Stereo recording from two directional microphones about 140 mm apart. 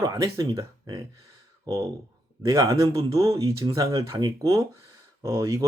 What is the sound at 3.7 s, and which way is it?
Speech, 25° right (ahead or behind).